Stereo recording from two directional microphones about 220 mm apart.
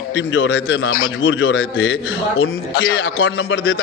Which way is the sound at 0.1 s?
60° left (ahead or behind).